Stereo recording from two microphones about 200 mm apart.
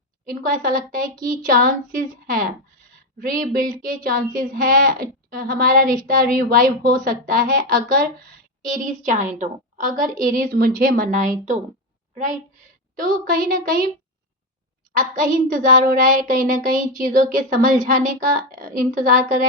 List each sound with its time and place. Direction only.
0.3 s child singing: 45° right (ahead or behind)
13.0 s child singing: 45° right (ahead or behind)
14.9 s child singing: 45° right (ahead or behind)